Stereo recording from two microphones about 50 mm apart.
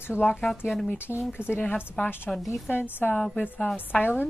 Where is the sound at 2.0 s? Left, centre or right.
Left.